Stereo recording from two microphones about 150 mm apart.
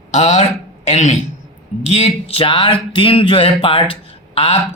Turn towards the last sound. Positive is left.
turn(degrees=35)  # may be behind; listen again after turning